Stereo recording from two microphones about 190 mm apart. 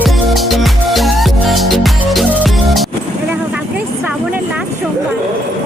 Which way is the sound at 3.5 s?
10° right (ahead or behind).